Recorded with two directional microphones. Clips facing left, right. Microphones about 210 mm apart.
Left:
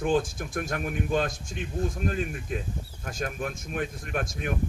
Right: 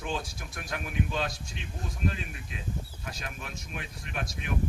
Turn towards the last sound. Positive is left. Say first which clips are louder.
# left 5 dB
turn(degrees=50)  # may be behind; listen again after turning